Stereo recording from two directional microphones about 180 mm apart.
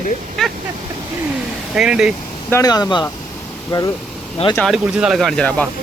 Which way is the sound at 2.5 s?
20° left (ahead or behind).